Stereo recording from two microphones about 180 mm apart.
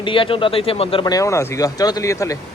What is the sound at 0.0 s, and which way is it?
Speech, 30° left (ahead or behind).